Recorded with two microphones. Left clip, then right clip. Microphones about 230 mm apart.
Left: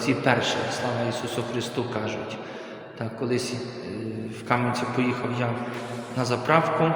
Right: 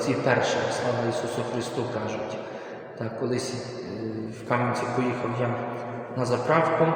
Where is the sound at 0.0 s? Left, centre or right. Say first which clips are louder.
Even; left.